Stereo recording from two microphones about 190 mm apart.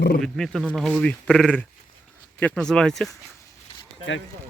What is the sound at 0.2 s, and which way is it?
Speech, 5° left (ahead or behind).